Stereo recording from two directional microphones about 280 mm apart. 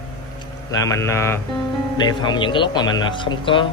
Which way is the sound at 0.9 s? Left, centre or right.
Centre.